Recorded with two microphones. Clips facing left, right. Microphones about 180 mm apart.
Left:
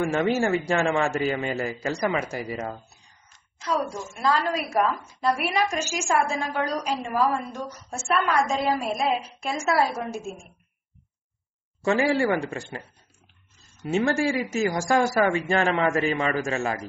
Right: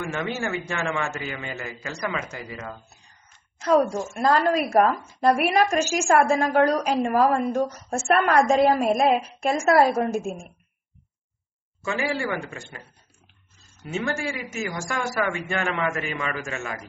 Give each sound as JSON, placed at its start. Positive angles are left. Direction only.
{"t": 0.0, "sound": "a man's voice", "side_deg": 35}
{"t": 3.5, "sound": "a woman's voice", "side_deg": -55}
{"t": 11.8, "sound": "a man's voice", "side_deg": 35}
{"t": 13.8, "sound": "a man's voice", "side_deg": 35}